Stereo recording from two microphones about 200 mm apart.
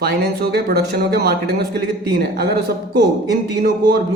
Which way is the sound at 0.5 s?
50° right (ahead or behind).